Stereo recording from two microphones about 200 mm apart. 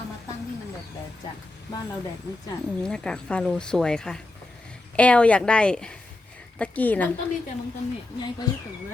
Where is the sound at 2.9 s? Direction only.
5° left (ahead or behind).